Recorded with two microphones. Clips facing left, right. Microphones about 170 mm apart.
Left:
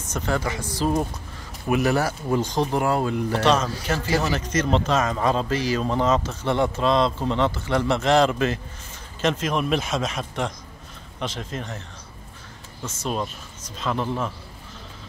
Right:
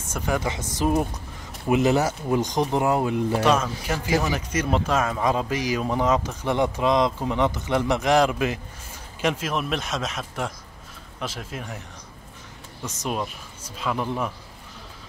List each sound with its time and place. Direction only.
0.1 s a man's voice: 10° right (ahead or behind)
3.3 s a man's voice: 10° right (ahead or behind)
12.8 s a man's voice: 15° right (ahead or behind)